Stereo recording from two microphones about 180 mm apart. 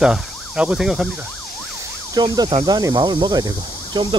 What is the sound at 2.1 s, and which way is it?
Speech, 20° right (ahead or behind).